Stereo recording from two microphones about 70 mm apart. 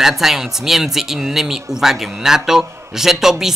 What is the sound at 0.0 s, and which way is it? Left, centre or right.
Speech, centre.